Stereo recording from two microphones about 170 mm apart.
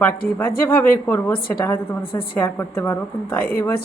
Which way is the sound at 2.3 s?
15° left (ahead or behind).